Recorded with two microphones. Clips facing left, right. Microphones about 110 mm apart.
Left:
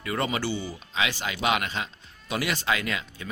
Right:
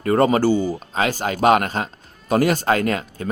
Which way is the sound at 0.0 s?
45° right (ahead or behind).